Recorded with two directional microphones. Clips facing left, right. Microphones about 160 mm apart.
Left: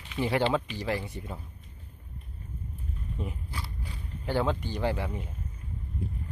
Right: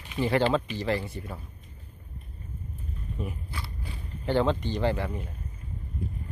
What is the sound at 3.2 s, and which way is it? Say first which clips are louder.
Speech: right 2 dB; 20° left (ahead or behind).